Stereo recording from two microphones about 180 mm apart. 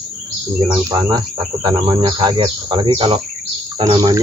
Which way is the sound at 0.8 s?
20° right (ahead or behind).